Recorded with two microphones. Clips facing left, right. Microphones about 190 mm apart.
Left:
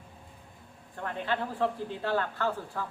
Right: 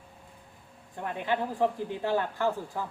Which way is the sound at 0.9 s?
15° right (ahead or behind).